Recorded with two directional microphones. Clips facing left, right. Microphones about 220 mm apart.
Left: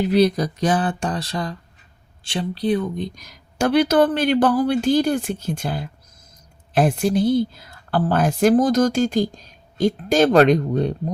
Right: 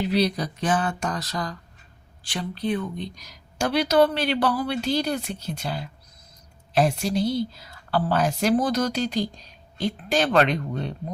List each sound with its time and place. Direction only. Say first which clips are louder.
0.0 s a woman's voice: left 6 dB; 50° left (ahead or behind)